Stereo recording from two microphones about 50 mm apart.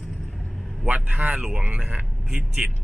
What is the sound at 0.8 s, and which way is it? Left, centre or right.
A man's voice, right.